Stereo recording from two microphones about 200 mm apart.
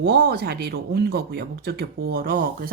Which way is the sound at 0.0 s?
50° right (ahead or behind).